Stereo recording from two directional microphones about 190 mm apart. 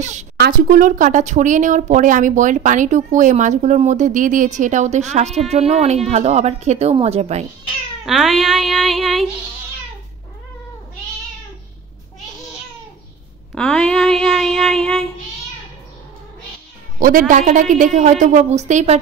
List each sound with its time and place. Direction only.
0.0 s a woman's voice: 40° right (ahead or behind)
8.0 s speech: centre (ahead or behind)
13.6 s speech: 5° left (ahead or behind)
17.0 s speech: 45° right (ahead or behind)